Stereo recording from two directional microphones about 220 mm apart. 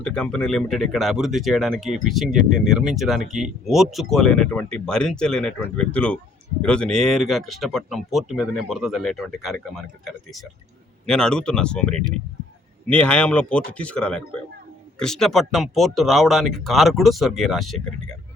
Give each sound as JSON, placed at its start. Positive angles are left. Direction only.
{"t": 0.0, "sound": "speech", "side_deg": 5}
{"t": 11.0, "sound": "speech", "side_deg": 5}